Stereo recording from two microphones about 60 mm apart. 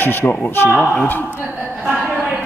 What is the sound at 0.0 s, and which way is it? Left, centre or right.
Speech, left.